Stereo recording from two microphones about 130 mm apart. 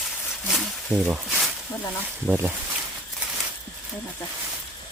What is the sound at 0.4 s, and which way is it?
Snake, 5° right (ahead or behind).